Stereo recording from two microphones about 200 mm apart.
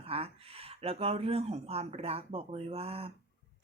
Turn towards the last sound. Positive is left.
turn(degrees=-30)  # may be behind; listen again after turning